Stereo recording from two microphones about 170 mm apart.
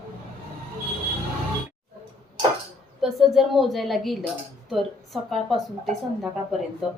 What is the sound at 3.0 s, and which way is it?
A woman's voice, centre (ahead or behind).